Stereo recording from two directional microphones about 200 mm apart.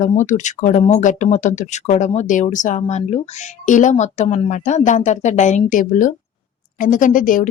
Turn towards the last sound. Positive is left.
turn(degrees=40)  # may be behind; listen again after turning